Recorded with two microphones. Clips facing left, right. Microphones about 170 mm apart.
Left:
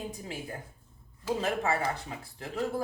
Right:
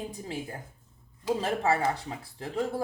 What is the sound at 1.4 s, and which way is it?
Speech, 35° right (ahead or behind).